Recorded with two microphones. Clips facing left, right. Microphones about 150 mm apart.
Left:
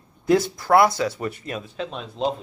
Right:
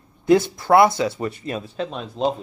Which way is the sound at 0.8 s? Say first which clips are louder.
Right 2 dB; 25° right (ahead or behind).